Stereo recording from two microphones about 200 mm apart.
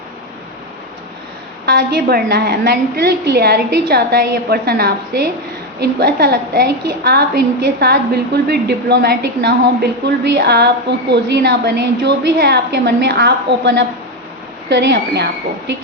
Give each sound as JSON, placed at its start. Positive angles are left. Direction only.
{"t": 1.6, "sound": "a woman's voice", "side_deg": -50}